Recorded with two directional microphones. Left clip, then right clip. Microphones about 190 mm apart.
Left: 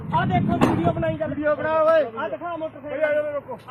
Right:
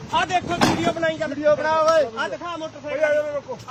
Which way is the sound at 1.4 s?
55° right (ahead or behind).